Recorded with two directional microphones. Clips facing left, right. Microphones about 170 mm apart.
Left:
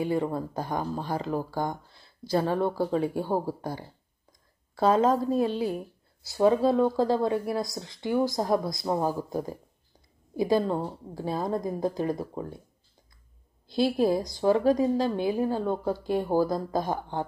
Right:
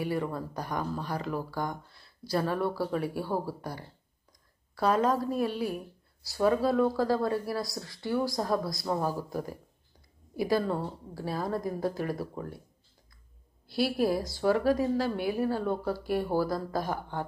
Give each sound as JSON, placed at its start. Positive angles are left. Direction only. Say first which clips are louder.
{"t": 0.0, "sound": "a woman's voice", "louder": "left 4 dB", "side_deg": 25}
{"t": 13.7, "sound": "a woman's voice", "louder": "left 3 dB", "side_deg": 20}